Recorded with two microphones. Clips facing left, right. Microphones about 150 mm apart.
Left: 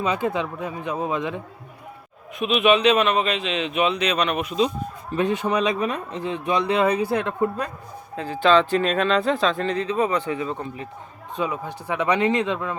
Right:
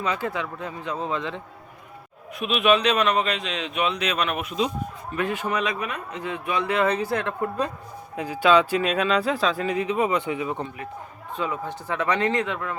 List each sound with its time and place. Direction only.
0.0 s a man's voice: 20° left (ahead or behind)
2.4 s a man's voice: centre (ahead or behind)
5.1 s speech: 20° left (ahead or behind)
5.8 s speech: 30° left (ahead or behind)
8.1 s speech: 10° right (ahead or behind)
11.3 s a man's voice: 15° left (ahead or behind)